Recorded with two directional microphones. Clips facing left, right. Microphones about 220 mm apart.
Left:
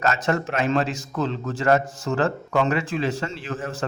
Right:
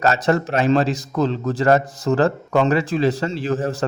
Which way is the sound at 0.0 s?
35° right (ahead or behind).